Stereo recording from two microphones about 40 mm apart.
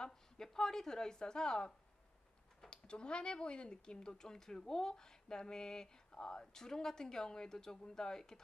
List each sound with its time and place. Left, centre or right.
0.0 s a woman's voice: centre